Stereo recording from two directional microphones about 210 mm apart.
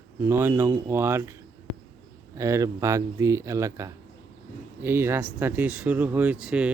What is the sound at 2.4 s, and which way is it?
Speech, 15° right (ahead or behind).